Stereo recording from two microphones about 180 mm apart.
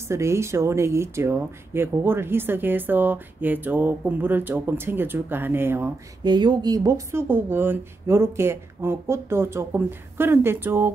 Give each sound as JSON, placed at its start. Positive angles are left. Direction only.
{"t": 0.1, "sound": "speech", "side_deg": -15}
{"t": 6.2, "sound": "speech", "side_deg": -25}